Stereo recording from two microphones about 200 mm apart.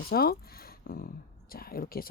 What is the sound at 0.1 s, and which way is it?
A woman's voice, 50° left (ahead or behind).